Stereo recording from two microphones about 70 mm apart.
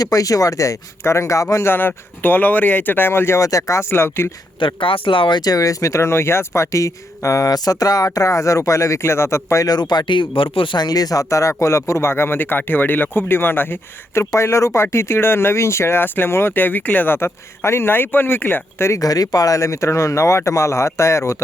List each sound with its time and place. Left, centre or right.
0.0 s speech: left
1.6 s speech: left
3.4 s speech: left
5.3 s speech: left
9.6 s speech: left
18.9 s speech: left